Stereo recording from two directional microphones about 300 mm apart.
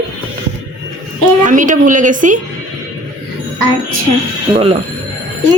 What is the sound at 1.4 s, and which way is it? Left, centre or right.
Speech, right.